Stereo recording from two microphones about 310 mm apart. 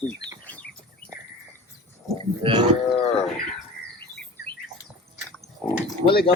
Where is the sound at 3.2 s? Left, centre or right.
Centre.